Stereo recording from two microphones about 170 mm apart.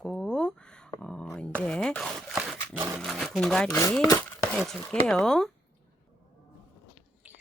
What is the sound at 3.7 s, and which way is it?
Speech, 20° left (ahead or behind).